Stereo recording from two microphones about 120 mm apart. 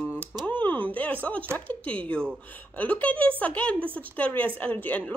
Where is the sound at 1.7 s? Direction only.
10° left (ahead or behind).